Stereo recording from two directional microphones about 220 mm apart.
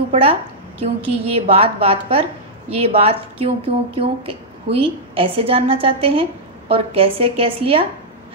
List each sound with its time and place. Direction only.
0.1 s a woman's voice: 25° right (ahead or behind)